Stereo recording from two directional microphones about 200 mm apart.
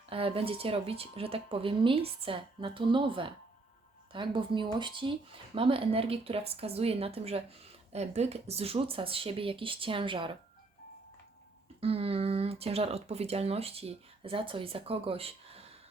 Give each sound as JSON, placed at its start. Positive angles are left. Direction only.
{"t": 0.1, "sound": "speech", "side_deg": -25}
{"t": 11.8, "sound": "speech", "side_deg": -30}